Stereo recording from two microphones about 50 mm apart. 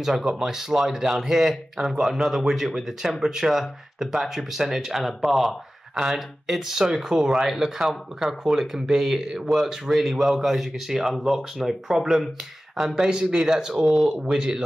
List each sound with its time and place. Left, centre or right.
0.0 s speech: centre
13.1 s speech: centre